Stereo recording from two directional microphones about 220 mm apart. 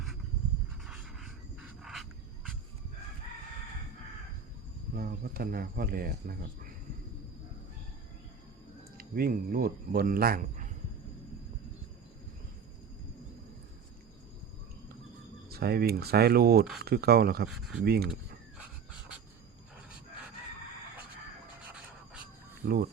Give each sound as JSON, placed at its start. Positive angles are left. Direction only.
{"t": 0.9, "sound": "a sound", "side_deg": -5}
{"t": 4.9, "sound": "speech", "side_deg": -40}
{"t": 9.0, "sound": "speech", "side_deg": -40}
{"t": 15.4, "sound": "speech", "side_deg": -45}
{"t": 17.5, "sound": "speech", "side_deg": -5}
{"t": 17.8, "sound": "speech", "side_deg": -45}
{"t": 18.1, "sound": "a sound", "side_deg": -5}
{"t": 21.7, "sound": "a sound", "side_deg": -5}
{"t": 22.6, "sound": "speech", "side_deg": -35}